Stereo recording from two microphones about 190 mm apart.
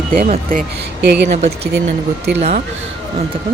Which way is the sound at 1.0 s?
65° right (ahead or behind).